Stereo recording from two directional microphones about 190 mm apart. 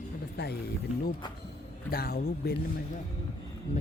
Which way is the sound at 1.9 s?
55° left (ahead or behind).